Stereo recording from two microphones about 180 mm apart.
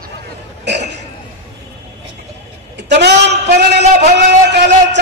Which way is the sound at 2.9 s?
70° right (ahead or behind).